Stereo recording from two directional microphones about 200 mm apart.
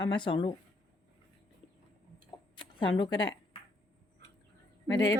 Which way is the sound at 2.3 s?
25° left (ahead or behind).